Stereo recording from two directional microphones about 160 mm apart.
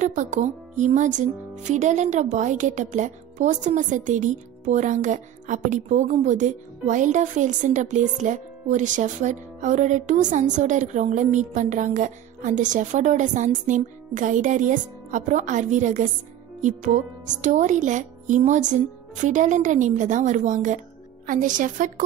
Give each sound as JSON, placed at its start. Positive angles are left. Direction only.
{"t": 0.0, "sound": "speech", "side_deg": -50}
{"t": 17.4, "sound": "speech", "side_deg": -50}